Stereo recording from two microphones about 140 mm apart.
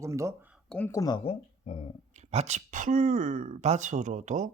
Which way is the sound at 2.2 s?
55° right (ahead or behind).